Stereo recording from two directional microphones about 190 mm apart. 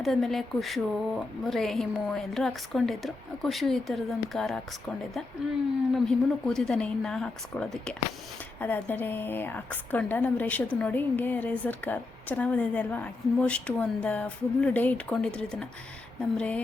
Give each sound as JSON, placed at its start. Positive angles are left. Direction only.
{"t": 0.0, "sound": "speech", "side_deg": 0}
{"t": 5.9, "sound": "a woman's voice", "side_deg": 0}